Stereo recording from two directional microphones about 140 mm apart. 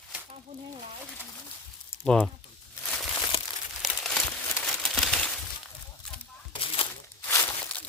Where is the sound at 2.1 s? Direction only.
5° left (ahead or behind).